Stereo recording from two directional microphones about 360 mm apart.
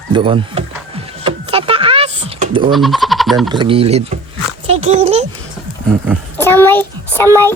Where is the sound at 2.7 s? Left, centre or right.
Centre.